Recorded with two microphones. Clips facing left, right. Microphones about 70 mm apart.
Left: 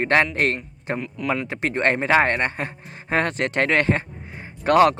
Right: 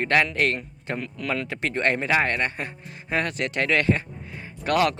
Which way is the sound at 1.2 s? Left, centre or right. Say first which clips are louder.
Left 3 dB; left.